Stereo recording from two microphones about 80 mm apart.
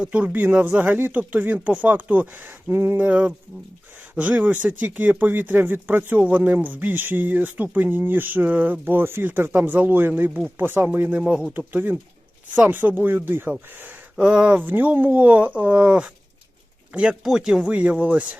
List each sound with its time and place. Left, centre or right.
0.0 s speech: centre
14.2 s speech: centre
17.2 s speech: centre